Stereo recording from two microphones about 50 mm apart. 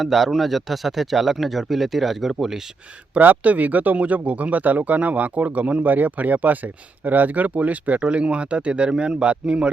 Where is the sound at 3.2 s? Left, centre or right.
Right.